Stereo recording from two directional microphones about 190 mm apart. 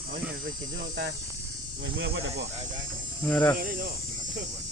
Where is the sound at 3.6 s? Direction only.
50° right (ahead or behind).